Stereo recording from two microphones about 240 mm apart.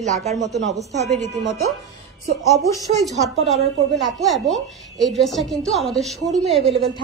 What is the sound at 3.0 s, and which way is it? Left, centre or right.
A woman's voice, centre.